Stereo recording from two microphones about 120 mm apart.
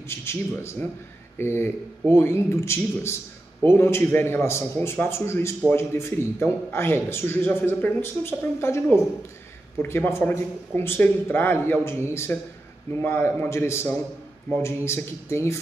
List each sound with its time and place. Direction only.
0.1 s a man's voice: 20° left (ahead or behind)
14.9 s a man's voice: 20° left (ahead or behind)